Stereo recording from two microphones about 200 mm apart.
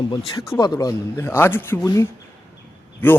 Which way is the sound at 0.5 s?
20° left (ahead or behind).